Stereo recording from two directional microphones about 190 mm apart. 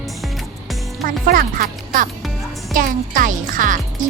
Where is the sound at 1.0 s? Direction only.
45° right (ahead or behind).